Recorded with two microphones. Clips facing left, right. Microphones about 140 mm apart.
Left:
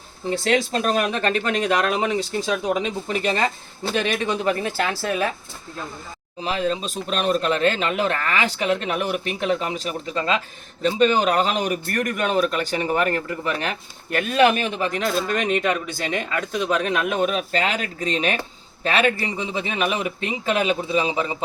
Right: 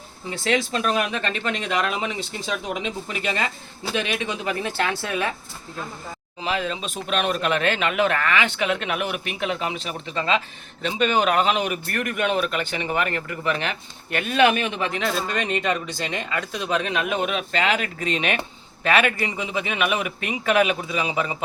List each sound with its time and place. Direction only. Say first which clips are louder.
0.3 s a man's voice: left 3 dB; 35° left (ahead or behind)
6.4 s a man's voice: left 3 dB; 35° left (ahead or behind)